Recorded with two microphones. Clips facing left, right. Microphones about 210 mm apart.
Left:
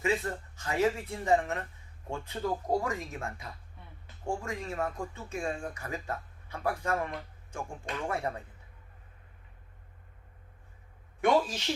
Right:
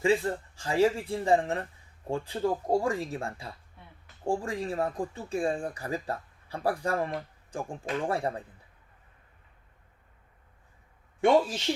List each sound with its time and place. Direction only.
0.0 s speech: 30° right (ahead or behind)